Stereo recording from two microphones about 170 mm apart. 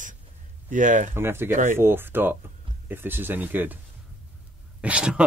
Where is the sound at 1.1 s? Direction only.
15° right (ahead or behind).